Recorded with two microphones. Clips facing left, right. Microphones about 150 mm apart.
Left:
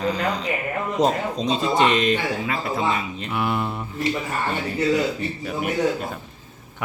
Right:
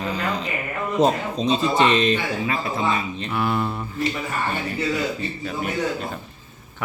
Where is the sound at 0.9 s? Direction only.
5° right (ahead or behind).